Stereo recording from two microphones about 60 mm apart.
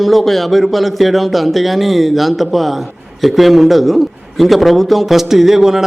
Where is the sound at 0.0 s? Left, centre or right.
Centre.